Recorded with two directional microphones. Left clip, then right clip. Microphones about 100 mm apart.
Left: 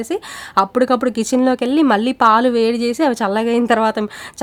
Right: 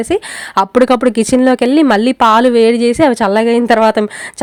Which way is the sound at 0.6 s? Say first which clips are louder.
Right 5 dB; 50° right (ahead or behind).